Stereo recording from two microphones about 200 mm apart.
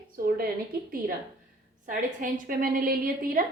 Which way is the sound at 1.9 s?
45° right (ahead or behind).